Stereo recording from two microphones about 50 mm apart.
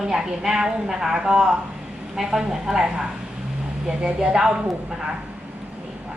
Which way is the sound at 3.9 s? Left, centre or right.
Centre.